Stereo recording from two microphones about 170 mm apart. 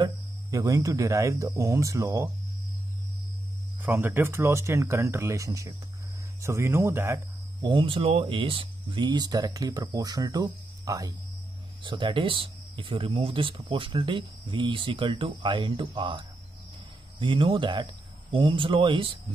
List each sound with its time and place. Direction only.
0.0 s speech: 20° right (ahead or behind)
3.8 s speech: 15° right (ahead or behind)
7.6 s speech: 30° right (ahead or behind)